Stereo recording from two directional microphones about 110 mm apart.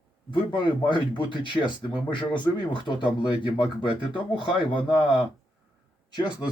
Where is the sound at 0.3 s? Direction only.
45° left (ahead or behind).